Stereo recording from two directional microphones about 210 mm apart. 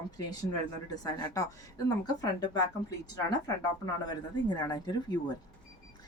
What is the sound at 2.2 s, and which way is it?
Speech, 20° left (ahead or behind).